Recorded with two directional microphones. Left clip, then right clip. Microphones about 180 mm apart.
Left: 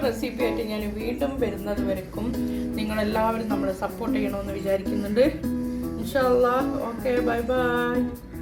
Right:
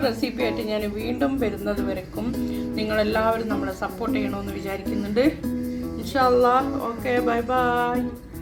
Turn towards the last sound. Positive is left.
turn(degrees=-40)  # may be behind; listen again after turning